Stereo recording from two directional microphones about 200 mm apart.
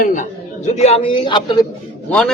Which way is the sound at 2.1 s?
5° left (ahead or behind).